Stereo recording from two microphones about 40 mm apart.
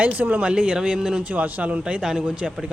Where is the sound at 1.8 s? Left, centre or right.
Right.